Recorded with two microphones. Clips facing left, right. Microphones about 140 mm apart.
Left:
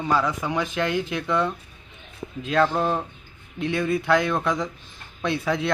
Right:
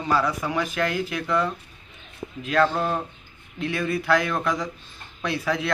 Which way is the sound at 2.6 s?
15° left (ahead or behind).